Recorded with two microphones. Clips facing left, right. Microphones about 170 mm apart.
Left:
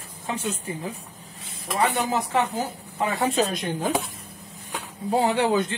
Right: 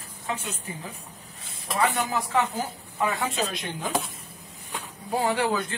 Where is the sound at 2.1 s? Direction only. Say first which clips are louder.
Left 2 dB; 30° left (ahead or behind); by 3.9 s 45° left (ahead or behind).